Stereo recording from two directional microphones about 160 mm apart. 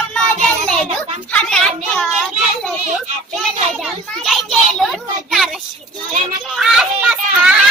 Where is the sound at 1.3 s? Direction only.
5° left (ahead or behind).